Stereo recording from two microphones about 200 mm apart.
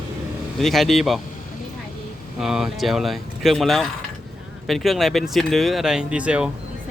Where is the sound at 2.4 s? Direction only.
Centre (ahead or behind).